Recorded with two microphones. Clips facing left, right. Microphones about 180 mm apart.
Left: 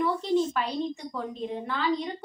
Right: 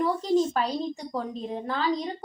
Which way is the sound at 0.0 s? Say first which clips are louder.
Right 2 dB; 40° right (ahead or behind).